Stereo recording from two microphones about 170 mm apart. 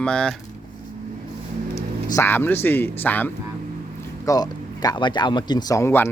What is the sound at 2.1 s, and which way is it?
Speech, 15° left (ahead or behind).